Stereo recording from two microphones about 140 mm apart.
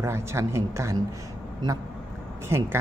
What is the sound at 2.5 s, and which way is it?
Speech, 20° right (ahead or behind).